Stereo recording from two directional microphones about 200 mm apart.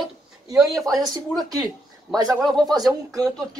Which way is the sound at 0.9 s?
20° right (ahead or behind).